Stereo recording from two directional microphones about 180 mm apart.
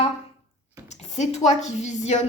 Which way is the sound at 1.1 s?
40° left (ahead or behind).